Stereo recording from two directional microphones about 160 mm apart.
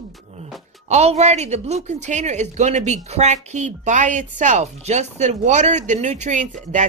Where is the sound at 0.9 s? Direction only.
45° right (ahead or behind).